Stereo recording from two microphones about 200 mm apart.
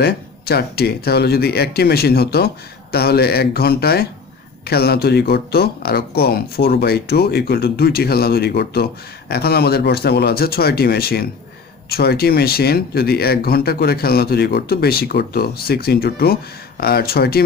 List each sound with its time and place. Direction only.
0.0 s speech: 50° left (ahead or behind)